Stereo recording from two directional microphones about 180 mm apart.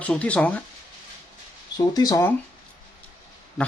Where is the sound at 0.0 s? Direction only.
5° left (ahead or behind).